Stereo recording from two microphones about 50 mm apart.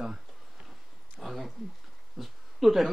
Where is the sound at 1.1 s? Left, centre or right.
Centre.